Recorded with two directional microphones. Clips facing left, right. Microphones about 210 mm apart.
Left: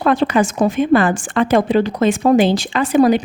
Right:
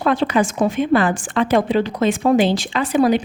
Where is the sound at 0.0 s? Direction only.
45° left (ahead or behind).